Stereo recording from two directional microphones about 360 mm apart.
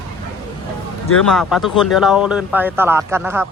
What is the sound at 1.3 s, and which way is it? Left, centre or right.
Speech, centre.